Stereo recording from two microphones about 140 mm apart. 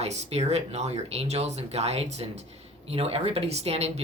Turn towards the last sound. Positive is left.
turn(degrees=-50)  # may be behind; listen again after turning